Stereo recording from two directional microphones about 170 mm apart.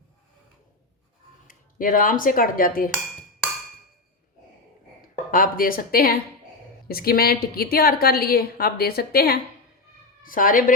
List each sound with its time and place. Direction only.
1.5 s speech: 55° left (ahead or behind)
5.3 s a woman's voice: 55° left (ahead or behind)